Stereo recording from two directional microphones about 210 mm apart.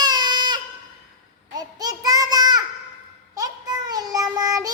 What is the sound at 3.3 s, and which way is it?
Child singing, 15° right (ahead or behind).